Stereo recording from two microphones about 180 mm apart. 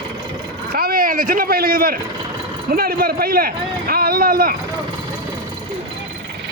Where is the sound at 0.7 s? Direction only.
55° right (ahead or behind).